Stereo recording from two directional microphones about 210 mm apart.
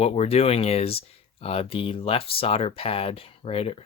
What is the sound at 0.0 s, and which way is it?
Speech, 30° left (ahead or behind).